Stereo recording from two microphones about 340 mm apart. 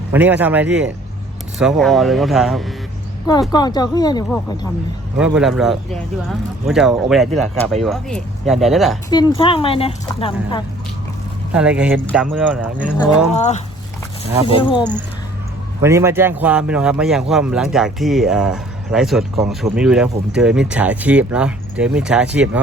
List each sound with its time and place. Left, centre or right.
0.1 s speech: centre
3.5 s speech: centre
5.1 s speech: centre
9.0 s speech: centre
11.5 s speech: centre
13.3 s speech: centre
15.8 s a man's voice: centre